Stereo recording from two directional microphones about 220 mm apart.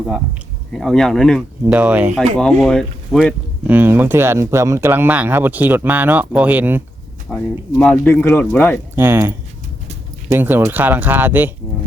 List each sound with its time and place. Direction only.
0.7 s speech: centre (ahead or behind)
7.3 s speech: 5° left (ahead or behind)
9.0 s speech: 10° right (ahead or behind)